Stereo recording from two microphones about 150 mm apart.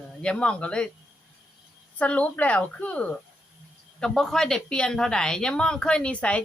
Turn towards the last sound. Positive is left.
turn(degrees=10)  # may be behind; listen again after turning